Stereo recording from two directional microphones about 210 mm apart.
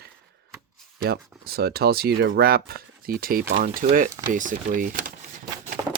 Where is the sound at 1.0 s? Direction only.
50° right (ahead or behind).